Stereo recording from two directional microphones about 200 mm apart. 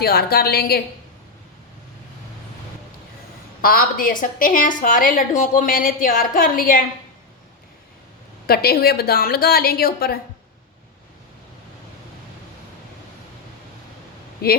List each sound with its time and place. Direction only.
0.0 s a woman's voice: 50° left (ahead or behind)
3.6 s a woman's voice: 45° left (ahead or behind)
8.4 s a woman's voice: 50° left (ahead or behind)
14.4 s a woman's voice: 50° left (ahead or behind)